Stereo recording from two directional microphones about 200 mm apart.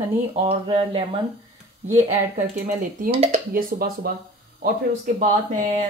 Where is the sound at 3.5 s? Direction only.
45° right (ahead or behind).